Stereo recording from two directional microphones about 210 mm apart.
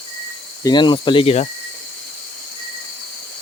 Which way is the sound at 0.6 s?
20° left (ahead or behind).